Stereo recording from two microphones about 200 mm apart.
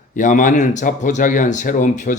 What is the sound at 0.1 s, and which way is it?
Speech, 40° left (ahead or behind).